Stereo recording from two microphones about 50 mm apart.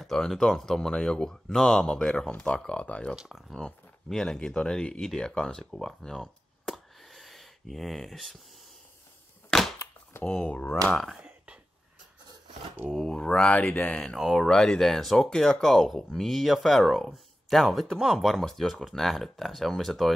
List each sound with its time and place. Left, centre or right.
0.4 s speech: centre
3.2 s speech: centre
3.5 s speech: centre
6.6 s a sound: centre
9.5 s a sound: centre
10.2 s speech: left
11.2 s whispering: right
13.1 s speech: centre
14.1 s speech: centre